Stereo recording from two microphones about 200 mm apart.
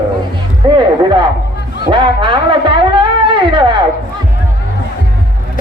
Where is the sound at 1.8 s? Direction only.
25° right (ahead or behind).